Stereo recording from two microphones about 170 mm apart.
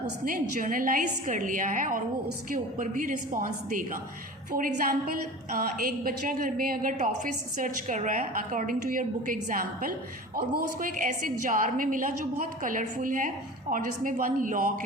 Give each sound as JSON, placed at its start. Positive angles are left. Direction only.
{"t": 0.3, "sound": "a woman's voice", "side_deg": -55}